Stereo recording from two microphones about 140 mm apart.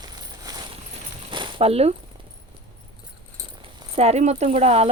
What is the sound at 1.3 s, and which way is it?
Coin, 35° right (ahead or behind).